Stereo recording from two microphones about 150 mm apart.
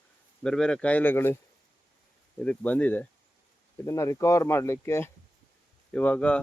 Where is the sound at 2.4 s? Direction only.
10° left (ahead or behind).